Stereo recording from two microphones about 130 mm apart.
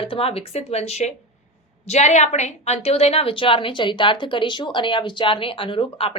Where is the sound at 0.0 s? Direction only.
45° left (ahead or behind).